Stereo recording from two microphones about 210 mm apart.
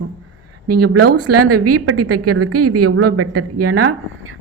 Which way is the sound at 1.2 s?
90° right.